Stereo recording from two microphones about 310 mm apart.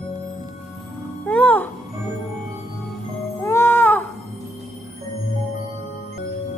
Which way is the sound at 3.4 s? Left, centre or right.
Centre.